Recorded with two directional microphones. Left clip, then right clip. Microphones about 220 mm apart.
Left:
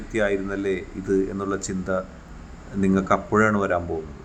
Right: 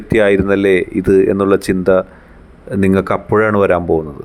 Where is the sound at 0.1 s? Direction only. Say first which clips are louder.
Right 12 dB; 45° right (ahead or behind).